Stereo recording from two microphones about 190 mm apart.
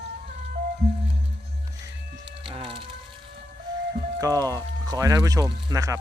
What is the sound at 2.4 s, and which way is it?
Music, 25° right (ahead or behind).